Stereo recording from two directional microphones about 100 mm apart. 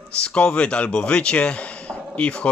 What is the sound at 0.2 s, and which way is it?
Speech, 10° left (ahead or behind).